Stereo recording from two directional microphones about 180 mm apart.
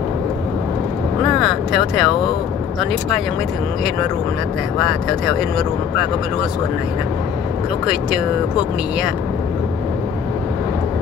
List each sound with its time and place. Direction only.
1.2 s speech: centre (ahead or behind)
4.7 s speech: centre (ahead or behind)